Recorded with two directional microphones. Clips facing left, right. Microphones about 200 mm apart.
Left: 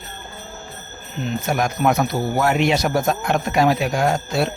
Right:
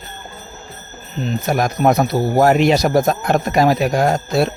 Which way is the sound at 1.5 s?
40° right (ahead or behind).